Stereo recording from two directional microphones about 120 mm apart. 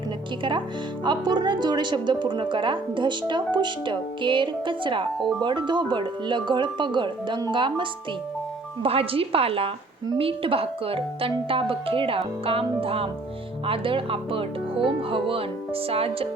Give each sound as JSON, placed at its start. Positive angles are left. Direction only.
{"t": 1.0, "sound": "a woman's voice", "side_deg": -40}